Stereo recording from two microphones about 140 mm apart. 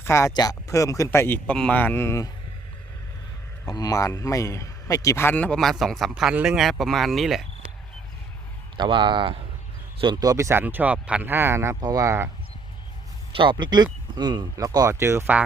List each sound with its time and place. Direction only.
0.0 s speech: 20° left (ahead or behind)
3.7 s speech: 25° left (ahead or behind)
5.5 s speech: centre (ahead or behind)
8.8 s speech: 35° right (ahead or behind)
13.3 s speech: 35° right (ahead or behind); by 15.4 s 15° right (ahead or behind)